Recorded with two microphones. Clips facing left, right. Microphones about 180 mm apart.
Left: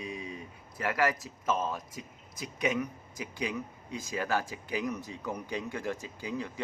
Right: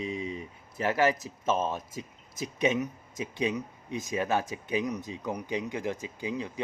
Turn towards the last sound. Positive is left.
turn(degrees=-20)  # may be behind; listen again after turning